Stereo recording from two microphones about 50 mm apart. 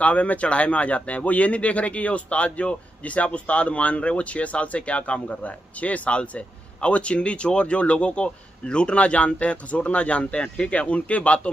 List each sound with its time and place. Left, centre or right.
0.0 s speech: left